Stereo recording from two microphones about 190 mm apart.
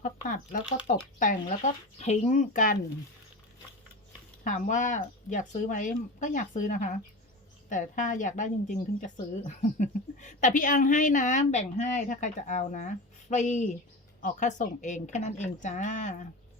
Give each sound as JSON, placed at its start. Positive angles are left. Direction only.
{"t": 0.0, "sound": "speech", "side_deg": 45}
{"t": 4.4, "sound": "speech", "side_deg": 40}